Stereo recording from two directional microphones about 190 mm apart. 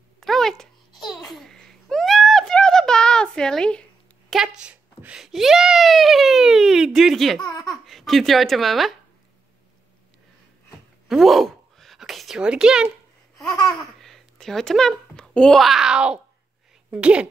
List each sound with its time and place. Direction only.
0.2 s babbling: centre (ahead or behind)
1.3 s a sound: centre (ahead or behind)
4.3 s a child's voice: 5° right (ahead or behind)
7.4 s speech: 20° left (ahead or behind)
7.8 s speech: centre (ahead or behind)
11.1 s a sound: centre (ahead or behind)
13.7 s a child's voice: centre (ahead or behind)